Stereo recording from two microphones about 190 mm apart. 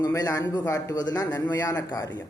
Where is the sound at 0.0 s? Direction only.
15° left (ahead or behind).